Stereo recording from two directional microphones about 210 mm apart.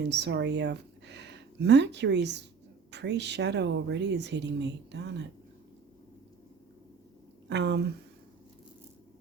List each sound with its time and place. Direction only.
0.0 s a woman's voice: 55° right (ahead or behind)
7.4 s speech: 55° right (ahead or behind)